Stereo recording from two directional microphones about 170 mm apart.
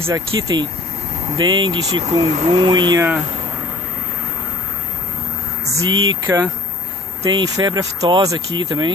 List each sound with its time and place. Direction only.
0.0 s speech: 20° right (ahead or behind)
5.8 s speech: 20° right (ahead or behind)